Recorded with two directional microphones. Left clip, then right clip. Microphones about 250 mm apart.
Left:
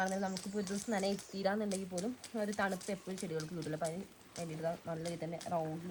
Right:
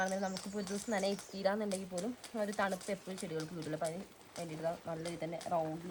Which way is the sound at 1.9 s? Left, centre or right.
Right.